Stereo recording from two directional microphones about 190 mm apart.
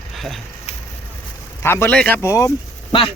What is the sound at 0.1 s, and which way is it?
Vehicle, centre (ahead or behind).